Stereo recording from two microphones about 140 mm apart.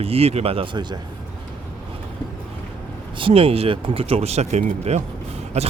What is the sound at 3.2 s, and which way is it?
Speech, 40° right (ahead or behind).